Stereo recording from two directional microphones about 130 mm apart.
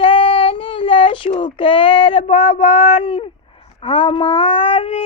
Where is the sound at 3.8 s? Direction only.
45° left (ahead or behind).